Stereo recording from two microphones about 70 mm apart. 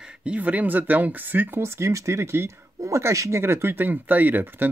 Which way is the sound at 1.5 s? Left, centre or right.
Right.